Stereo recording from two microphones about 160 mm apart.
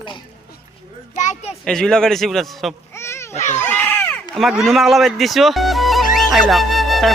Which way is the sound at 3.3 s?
45° left (ahead or behind).